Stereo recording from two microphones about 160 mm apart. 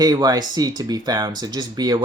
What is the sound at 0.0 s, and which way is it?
Speech, 25° right (ahead or behind).